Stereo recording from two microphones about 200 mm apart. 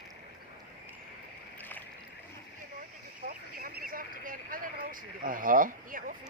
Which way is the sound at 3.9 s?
45° right (ahead or behind).